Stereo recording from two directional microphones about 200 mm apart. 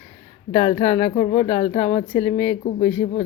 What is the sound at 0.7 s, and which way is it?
Speech, 30° left (ahead or behind).